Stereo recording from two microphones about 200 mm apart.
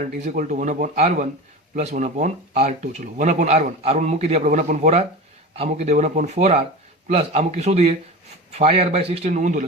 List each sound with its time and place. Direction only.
0.0 s speech: 40° right (ahead or behind)